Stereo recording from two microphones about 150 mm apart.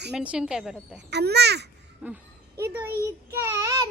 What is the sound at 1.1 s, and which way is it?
Speech, 90° right.